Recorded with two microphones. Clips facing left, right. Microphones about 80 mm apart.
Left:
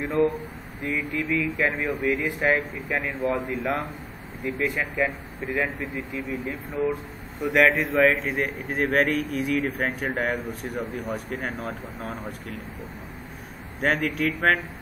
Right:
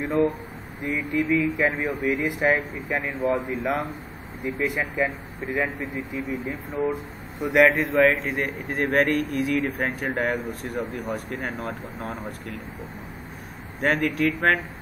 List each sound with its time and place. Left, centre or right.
0.3 s a sound: centre
1.1 s speech: centre
2.0 s speech: centre
7.3 s speech: centre
13.7 s speech: centre